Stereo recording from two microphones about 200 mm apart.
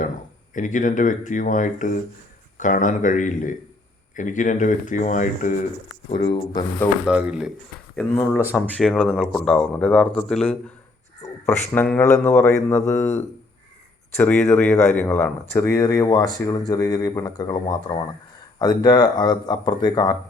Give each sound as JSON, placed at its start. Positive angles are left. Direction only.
{"t": 0.5, "sound": "speech", "side_deg": 40}
{"t": 6.1, "sound": "speech", "side_deg": 25}
{"t": 7.0, "sound": "speech", "side_deg": -5}
{"t": 8.4, "sound": "speech", "side_deg": -10}
{"t": 8.7, "sound": "speech", "side_deg": 5}